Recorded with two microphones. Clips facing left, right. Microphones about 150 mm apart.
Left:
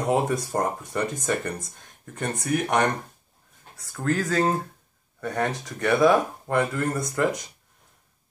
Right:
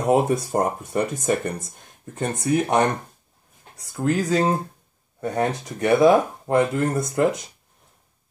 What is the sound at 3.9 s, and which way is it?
Speech, 15° right (ahead or behind).